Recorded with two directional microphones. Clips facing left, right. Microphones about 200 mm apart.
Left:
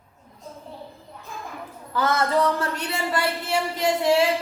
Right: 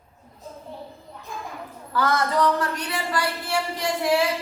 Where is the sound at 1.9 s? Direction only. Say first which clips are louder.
Left 1 dB; 25° left (ahead or behind).